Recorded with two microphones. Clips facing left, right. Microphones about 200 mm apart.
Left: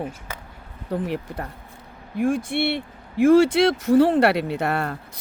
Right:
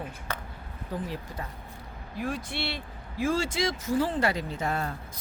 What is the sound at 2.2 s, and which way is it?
Speech, 50° left (ahead or behind).